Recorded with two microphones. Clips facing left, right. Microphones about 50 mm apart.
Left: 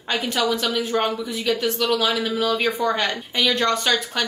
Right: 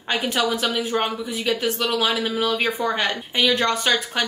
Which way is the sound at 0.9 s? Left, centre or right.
Right.